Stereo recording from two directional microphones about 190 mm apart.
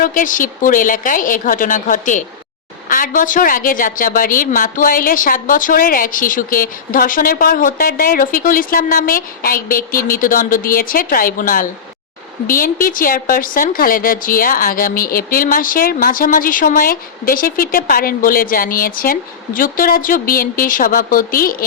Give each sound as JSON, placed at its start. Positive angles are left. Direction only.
{"t": 0.0, "sound": "a woman's voice", "side_deg": 45}